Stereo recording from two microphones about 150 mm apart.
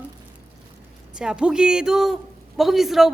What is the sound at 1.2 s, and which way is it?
Speech, 5° right (ahead or behind).